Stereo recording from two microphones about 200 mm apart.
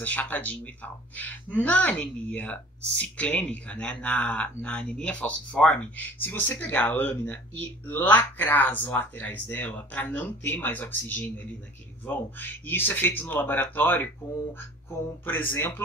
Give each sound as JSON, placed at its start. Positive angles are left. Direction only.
{"t": 0.0, "sound": "speech", "side_deg": 10}
{"t": 15.2, "sound": "speech", "side_deg": 10}